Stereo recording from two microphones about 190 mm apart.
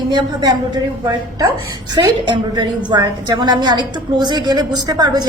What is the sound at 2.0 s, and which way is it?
A woman's voice, 25° right (ahead or behind).